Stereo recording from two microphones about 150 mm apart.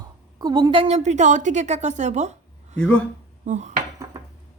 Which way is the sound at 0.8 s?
45° right (ahead or behind).